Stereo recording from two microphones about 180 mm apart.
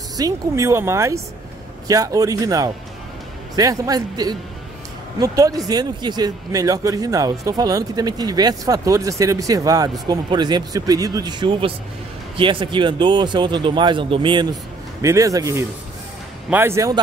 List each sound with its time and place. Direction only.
0.2 s speech: 15° right (ahead or behind)